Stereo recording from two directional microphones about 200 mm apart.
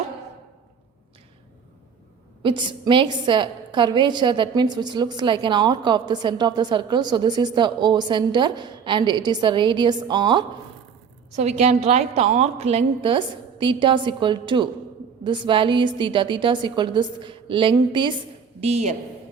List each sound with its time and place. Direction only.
2.4 s a woman's voice: 25° right (ahead or behind)
11.3 s a woman's voice: 35° right (ahead or behind)